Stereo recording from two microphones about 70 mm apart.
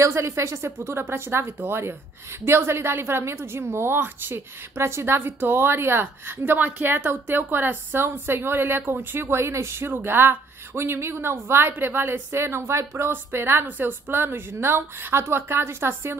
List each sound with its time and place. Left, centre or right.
0.0 s a woman's voice: right